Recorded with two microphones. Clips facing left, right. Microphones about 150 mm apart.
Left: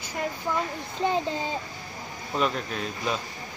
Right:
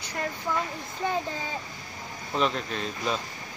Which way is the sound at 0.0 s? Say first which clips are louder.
Left 2 dB; 5° left (ahead or behind).